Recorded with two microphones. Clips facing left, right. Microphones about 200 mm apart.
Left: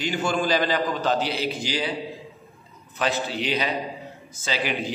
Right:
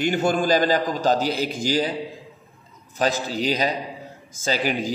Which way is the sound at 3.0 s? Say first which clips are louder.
Right 3 dB; 40° right (ahead or behind).